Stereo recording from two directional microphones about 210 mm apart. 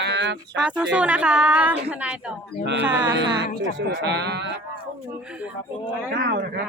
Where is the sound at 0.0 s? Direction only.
55° right (ahead or behind).